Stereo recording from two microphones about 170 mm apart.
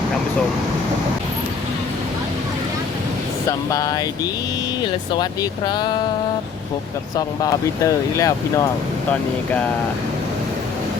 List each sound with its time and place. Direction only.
3.7 s speech: 20° left (ahead or behind)
7.2 s speech: 20° left (ahead or behind)